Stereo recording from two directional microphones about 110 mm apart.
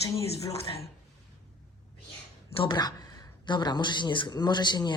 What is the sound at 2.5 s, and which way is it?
Speech, 45° left (ahead or behind).